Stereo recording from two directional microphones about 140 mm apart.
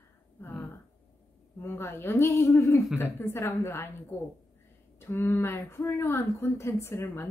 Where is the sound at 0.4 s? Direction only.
10° left (ahead or behind).